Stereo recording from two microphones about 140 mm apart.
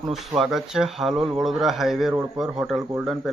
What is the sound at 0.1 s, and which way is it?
Speech, centre (ahead or behind).